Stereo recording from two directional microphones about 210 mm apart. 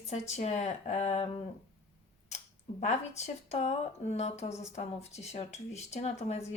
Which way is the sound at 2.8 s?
30° left (ahead or behind).